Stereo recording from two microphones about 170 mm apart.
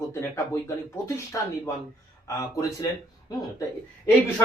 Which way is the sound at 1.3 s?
20° left (ahead or behind).